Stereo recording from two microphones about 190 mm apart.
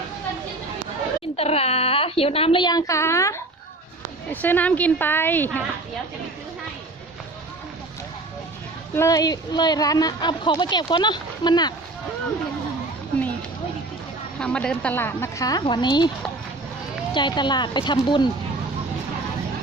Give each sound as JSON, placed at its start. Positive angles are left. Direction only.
{"t": 1.4, "sound": "a woman's voice", "side_deg": 35}
{"t": 9.0, "sound": "a woman's voice", "side_deg": 20}
{"t": 14.3, "sound": "a woman's voice", "side_deg": 5}
{"t": 17.2, "sound": "a woman's voice", "side_deg": 25}